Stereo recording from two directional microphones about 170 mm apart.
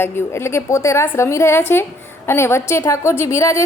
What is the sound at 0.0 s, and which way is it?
A woman's voice, 15° left (ahead or behind).